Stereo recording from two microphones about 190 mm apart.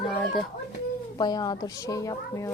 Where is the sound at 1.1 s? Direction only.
20° left (ahead or behind).